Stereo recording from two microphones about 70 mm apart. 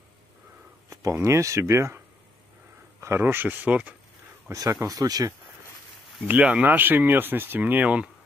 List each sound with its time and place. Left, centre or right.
1.2 s speech: right
3.2 s speech: right
3.6 s speech: right
4.5 s speech: right
6.2 s speech: right